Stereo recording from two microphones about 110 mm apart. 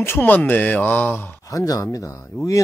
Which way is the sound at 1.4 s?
30° left (ahead or behind).